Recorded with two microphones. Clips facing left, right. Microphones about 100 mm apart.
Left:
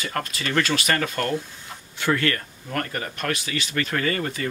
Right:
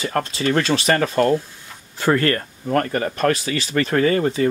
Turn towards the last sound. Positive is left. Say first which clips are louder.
# right 8 dB
turn(degrees=-25)  # may be behind; listen again after turning